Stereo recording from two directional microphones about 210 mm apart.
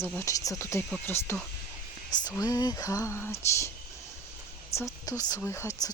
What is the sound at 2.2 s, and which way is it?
Speech, 20° left (ahead or behind).